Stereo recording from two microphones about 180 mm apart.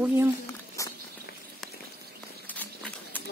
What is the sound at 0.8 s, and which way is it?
Patter, 15° left (ahead or behind).